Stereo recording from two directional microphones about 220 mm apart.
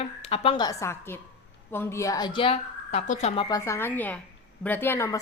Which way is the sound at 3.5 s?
15° left (ahead or behind).